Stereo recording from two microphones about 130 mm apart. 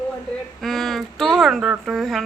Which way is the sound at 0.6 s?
Centre (ahead or behind).